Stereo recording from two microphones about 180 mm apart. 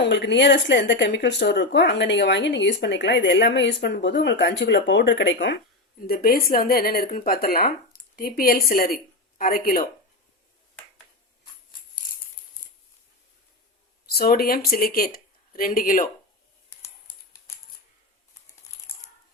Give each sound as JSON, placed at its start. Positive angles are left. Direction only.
{"t": 0.0, "sound": "speech", "side_deg": 75}
{"t": 6.0, "sound": "speech", "side_deg": 55}
{"t": 14.1, "sound": "speech", "side_deg": 60}